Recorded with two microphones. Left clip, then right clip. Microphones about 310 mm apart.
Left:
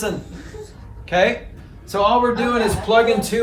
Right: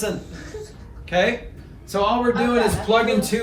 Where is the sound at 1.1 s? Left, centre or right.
Centre.